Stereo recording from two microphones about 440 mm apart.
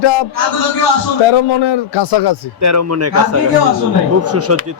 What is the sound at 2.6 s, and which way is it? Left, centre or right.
Speech, right.